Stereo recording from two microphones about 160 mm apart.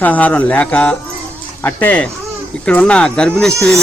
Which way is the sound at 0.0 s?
10° left (ahead or behind).